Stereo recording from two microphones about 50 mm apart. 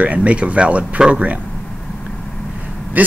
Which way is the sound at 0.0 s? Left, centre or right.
Right.